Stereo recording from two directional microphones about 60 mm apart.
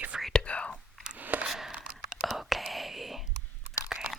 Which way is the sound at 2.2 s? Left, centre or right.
Centre.